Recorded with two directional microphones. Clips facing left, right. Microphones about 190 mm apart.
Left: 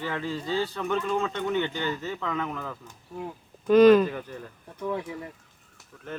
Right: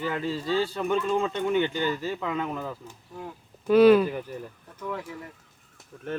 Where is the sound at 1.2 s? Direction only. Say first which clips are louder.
Right 2 dB; 15° right (ahead or behind).